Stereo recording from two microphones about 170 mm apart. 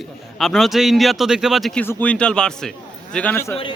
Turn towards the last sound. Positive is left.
turn(degrees=10)  # may be behind; listen again after turning